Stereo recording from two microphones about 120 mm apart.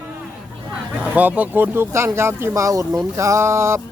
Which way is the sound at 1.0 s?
15° right (ahead or behind).